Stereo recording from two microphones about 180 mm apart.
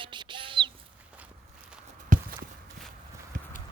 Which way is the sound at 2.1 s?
45° right (ahead or behind).